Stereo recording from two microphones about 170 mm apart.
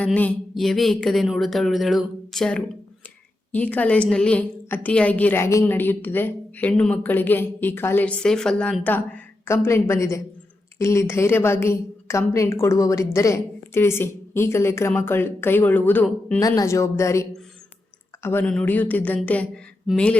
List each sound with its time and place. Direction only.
0.0 s a woman's voice: 5° left (ahead or behind)